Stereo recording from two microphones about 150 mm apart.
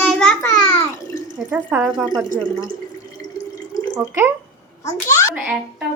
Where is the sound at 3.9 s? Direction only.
15° right (ahead or behind).